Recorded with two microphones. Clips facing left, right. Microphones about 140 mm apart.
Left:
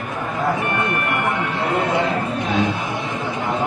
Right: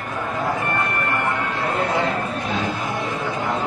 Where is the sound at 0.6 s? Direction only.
20° left (ahead or behind).